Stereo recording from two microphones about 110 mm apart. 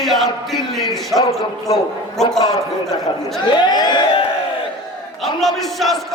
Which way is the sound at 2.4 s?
35° left (ahead or behind).